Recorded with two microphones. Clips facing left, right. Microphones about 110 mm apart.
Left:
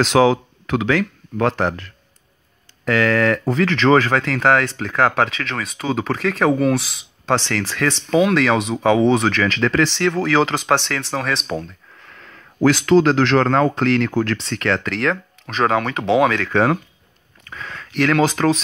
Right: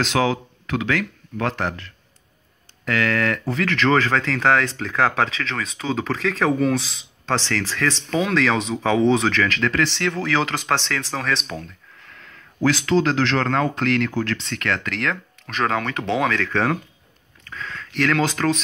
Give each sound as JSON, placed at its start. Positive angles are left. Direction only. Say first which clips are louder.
{"t": 0.0, "sound": "speech", "louder": "left 6 dB", "side_deg": 35}
{"t": 1.6, "sound": "speech", "louder": "left 5 dB", "side_deg": 40}
{"t": 3.7, "sound": "speech", "louder": "left 3 dB", "side_deg": 20}
{"t": 9.5, "sound": "speech", "louder": "left 4 dB", "side_deg": 30}
{"t": 10.5, "sound": "speech", "louder": "left 4 dB", "side_deg": 15}
{"t": 12.2, "sound": "speech", "louder": "left 5 dB", "side_deg": 45}
{"t": 14.4, "sound": "speech", "louder": "left 4 dB", "side_deg": 35}
{"t": 15.4, "sound": "speech", "louder": "left 4 dB", "side_deg": 15}
{"t": 17.5, "sound": "speech", "louder": "even", "side_deg": 15}